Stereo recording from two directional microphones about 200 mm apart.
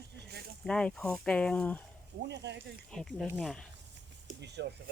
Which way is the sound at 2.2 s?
60° right (ahead or behind).